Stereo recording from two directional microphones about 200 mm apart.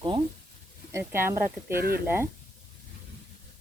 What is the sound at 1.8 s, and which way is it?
Speech, 50° right (ahead or behind).